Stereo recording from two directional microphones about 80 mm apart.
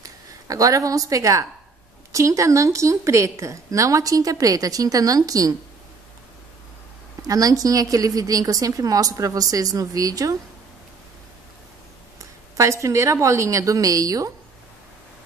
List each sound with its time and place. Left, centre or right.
0.0 s a woman's voice: right
7.2 s a woman's voice: right
12.2 s speech: right